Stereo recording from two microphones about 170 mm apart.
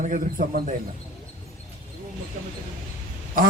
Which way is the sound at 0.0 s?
50° right (ahead or behind).